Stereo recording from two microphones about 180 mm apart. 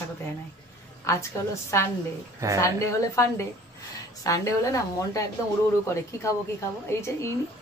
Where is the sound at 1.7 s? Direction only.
15° left (ahead or behind).